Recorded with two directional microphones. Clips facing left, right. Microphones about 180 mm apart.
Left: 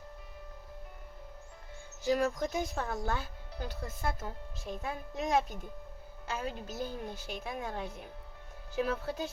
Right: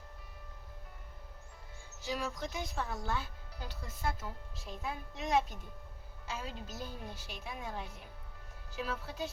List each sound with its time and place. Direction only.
2.0 s speech: 50° left (ahead or behind)